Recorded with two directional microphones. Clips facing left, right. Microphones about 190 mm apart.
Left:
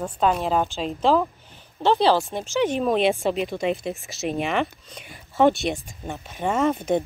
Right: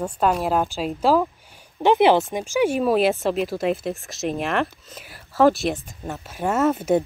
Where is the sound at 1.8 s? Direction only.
20° right (ahead or behind).